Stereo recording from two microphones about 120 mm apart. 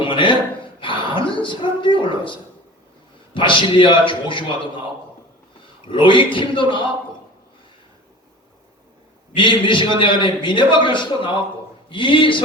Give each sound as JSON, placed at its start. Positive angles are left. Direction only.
{"t": 0.0, "sound": "a woman's voice", "side_deg": 45}
{"t": 5.9, "sound": "a woman's voice", "side_deg": 45}
{"t": 9.3, "sound": "a woman's voice", "side_deg": 45}